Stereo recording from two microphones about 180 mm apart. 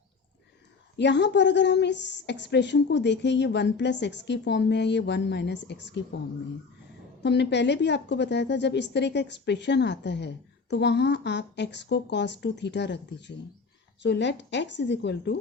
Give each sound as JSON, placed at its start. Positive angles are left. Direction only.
{"t": 0.9, "sound": "a woman's voice", "side_deg": 75}
{"t": 7.2, "sound": "a woman's voice", "side_deg": 70}